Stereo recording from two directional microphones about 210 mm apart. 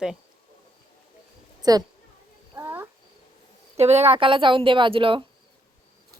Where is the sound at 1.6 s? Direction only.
20° right (ahead or behind).